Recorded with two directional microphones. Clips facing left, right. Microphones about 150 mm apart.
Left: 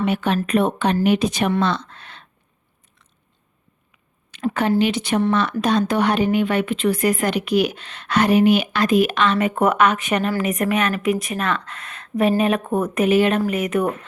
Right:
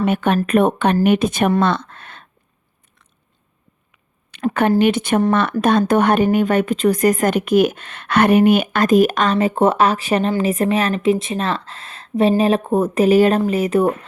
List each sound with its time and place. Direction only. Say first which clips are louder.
0.0 s speech: right 3 dB; 50° right (ahead or behind)
4.3 s a sound: right 4 dB; 60° right (ahead or behind)
4.7 s speech: right 3 dB; 50° right (ahead or behind)
9.4 s a woman's voice: right 3 dB; 30° right (ahead or behind)